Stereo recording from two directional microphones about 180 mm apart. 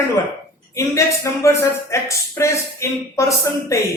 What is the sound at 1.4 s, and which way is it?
A man's voice, 15° left (ahead or behind).